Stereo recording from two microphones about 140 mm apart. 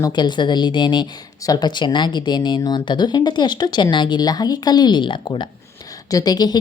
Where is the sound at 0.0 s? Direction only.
30° left (ahead or behind).